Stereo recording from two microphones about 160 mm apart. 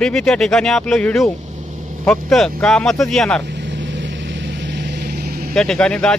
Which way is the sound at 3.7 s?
90° right.